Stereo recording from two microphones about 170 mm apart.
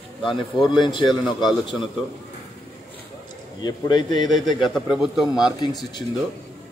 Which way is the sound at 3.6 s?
25° left (ahead or behind).